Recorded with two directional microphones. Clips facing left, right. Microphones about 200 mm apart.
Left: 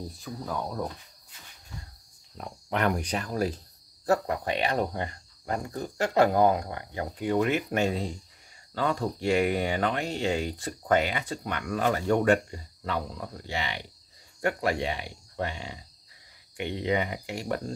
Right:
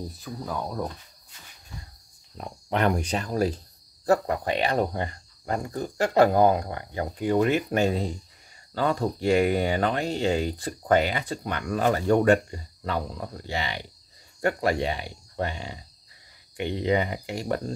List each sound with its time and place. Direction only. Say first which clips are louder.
0.1 s speech: right 1 dB; 5° right (ahead or behind)
2.3 s speech: right 3 dB; 25° right (ahead or behind)